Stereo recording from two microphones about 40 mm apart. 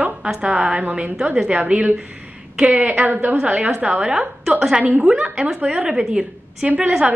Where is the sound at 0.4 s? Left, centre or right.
Right.